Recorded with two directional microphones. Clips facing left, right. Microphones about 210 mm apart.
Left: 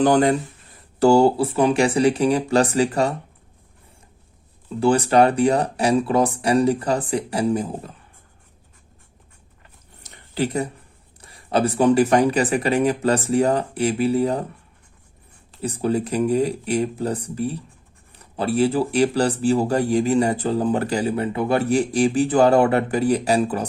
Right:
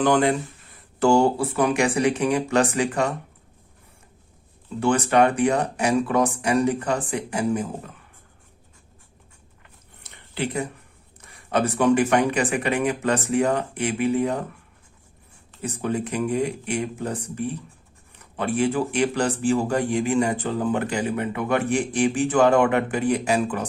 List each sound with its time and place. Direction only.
0.0 s speech: 40° left (ahead or behind)
4.8 s speech: 35° left (ahead or behind)
10.0 s a sound: 40° left (ahead or behind)
11.2 s speech: 35° left (ahead or behind)
15.6 s speech: 35° left (ahead or behind)